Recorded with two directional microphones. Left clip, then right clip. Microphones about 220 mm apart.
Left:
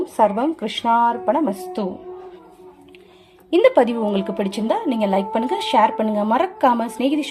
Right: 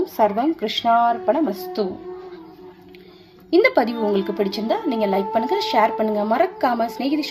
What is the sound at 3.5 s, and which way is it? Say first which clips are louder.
A woman's voice: left 2 dB; 20° left (ahead or behind).